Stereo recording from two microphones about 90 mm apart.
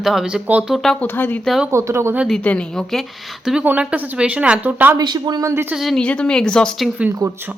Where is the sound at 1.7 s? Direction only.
30° right (ahead or behind).